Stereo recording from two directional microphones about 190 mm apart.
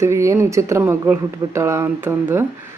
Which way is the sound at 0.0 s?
15° right (ahead or behind).